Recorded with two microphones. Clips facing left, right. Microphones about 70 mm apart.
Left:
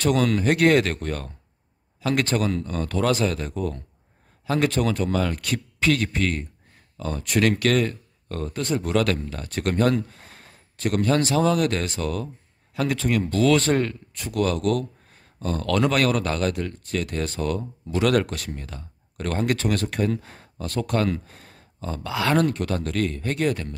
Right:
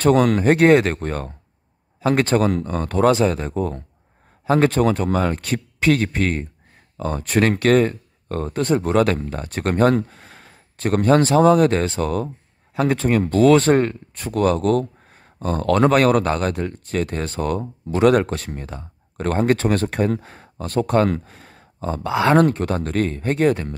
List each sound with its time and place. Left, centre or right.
0.0 s speech: right